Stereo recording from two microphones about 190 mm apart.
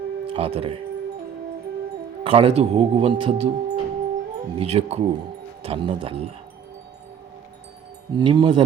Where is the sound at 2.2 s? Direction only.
30° right (ahead or behind).